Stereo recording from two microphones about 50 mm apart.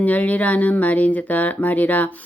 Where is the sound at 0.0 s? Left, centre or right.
Left.